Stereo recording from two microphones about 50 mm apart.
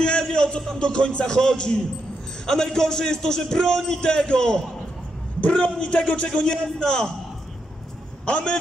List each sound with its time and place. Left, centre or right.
0.0 s a man's voice: centre
8.3 s a man's voice: left